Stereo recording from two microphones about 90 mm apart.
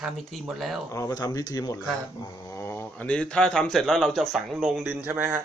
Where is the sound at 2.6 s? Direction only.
30° left (ahead or behind).